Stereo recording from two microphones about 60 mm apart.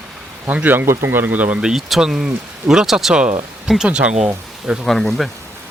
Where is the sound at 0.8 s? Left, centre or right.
Right.